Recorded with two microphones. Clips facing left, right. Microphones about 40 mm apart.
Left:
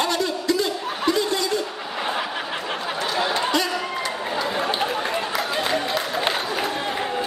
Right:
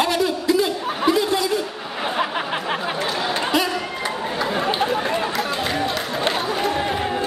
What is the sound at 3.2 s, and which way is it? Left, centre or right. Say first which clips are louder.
Chatter: left 1 dB; centre.